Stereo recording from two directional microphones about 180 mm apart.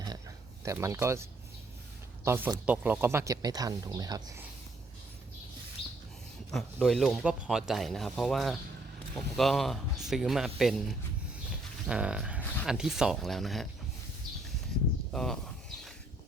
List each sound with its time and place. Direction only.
0.6 s speech: 15° right (ahead or behind)
5.8 s a sound: 30° left (ahead or behind)
6.5 s speech: centre (ahead or behind)
15.1 s speech: 5° left (ahead or behind)